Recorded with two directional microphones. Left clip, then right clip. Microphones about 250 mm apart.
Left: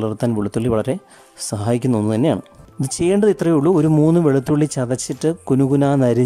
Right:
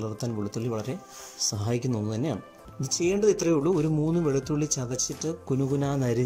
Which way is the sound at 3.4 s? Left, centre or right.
Left.